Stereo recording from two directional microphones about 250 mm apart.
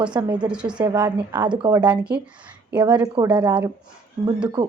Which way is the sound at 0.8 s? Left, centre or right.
Centre.